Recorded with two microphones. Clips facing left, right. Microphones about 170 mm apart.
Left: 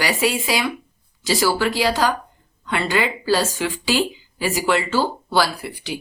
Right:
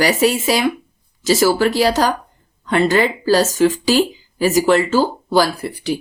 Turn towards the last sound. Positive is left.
turn(degrees=-45)  # may be behind; listen again after turning